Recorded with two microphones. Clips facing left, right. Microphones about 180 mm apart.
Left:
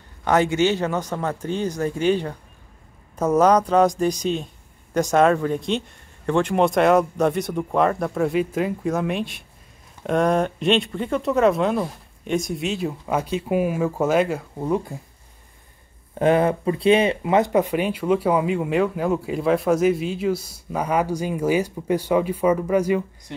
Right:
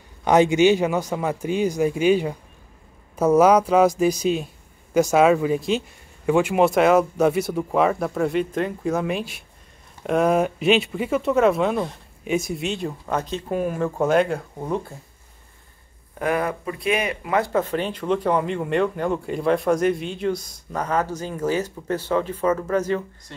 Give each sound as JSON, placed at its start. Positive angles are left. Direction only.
{"t": 0.2, "sound": "a man's voice", "side_deg": -15}
{"t": 16.2, "sound": "speech", "side_deg": 25}